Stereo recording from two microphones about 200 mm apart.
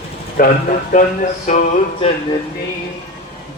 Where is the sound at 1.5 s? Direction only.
40° left (ahead or behind).